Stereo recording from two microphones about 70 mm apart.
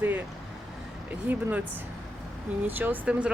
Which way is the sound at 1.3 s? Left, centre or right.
Right.